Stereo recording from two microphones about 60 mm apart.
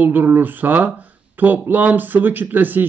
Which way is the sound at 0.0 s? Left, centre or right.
Right.